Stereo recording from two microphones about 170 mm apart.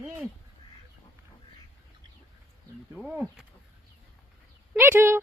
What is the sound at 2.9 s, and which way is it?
Speech, 5° right (ahead or behind).